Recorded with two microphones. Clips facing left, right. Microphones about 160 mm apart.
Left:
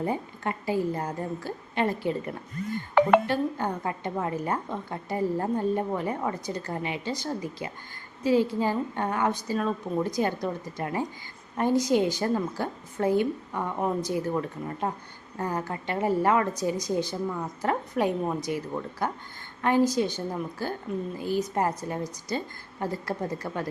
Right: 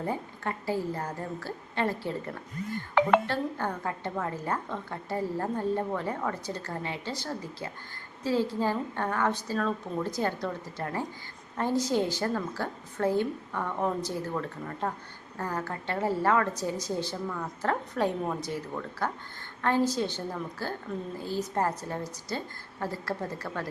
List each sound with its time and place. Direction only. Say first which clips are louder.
0.0 s speech: left 3 dB; 15° left (ahead or behind)